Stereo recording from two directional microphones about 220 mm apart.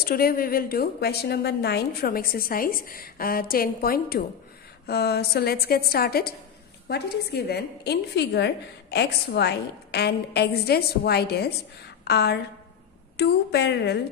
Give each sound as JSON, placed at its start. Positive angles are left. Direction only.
{"t": 0.0, "sound": "a woman's voice", "side_deg": 45}